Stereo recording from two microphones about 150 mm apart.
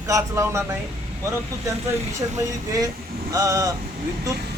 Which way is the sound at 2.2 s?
20° right (ahead or behind).